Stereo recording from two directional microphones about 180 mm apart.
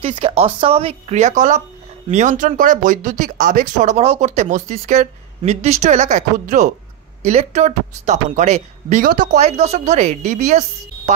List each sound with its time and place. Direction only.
0.0 s speech: 30° right (ahead or behind)